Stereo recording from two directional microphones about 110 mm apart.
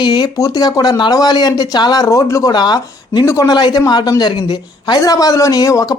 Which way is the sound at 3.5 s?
40° left (ahead or behind).